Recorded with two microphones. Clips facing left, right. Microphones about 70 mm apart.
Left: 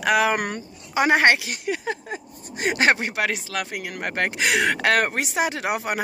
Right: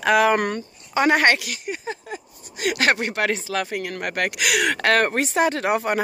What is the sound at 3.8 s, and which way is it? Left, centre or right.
Speech, centre.